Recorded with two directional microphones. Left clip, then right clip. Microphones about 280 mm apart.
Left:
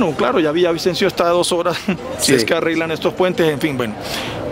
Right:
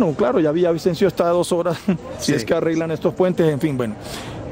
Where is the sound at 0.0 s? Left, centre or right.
Centre.